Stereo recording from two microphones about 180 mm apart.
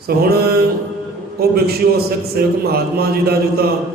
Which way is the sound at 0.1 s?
60° right (ahead or behind).